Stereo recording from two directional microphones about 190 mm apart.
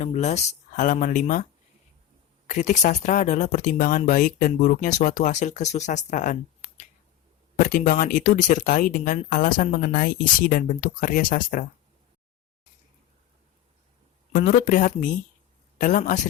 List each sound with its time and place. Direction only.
0.0 s speech: 35° left (ahead or behind)
2.5 s speech: 40° left (ahead or behind)
7.6 s speech: 45° left (ahead or behind)
14.3 s speech: 40° left (ahead or behind)